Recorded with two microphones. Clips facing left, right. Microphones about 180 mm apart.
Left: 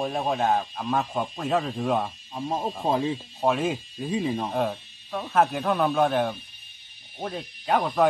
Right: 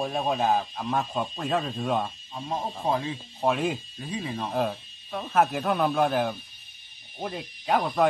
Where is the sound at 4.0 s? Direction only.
20° left (ahead or behind).